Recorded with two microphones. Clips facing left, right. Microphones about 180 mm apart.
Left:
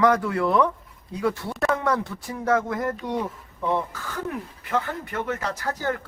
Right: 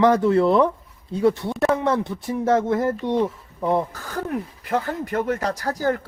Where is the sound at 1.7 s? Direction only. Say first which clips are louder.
Right 3 dB; 20° right (ahead or behind).